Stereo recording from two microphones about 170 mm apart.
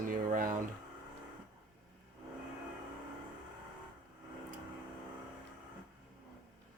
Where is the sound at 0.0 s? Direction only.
50° right (ahead or behind).